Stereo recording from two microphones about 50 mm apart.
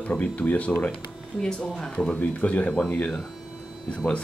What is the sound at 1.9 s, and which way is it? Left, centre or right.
Speech, left.